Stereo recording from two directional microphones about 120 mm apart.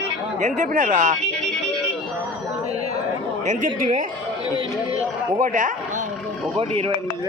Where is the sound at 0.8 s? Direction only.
90° right.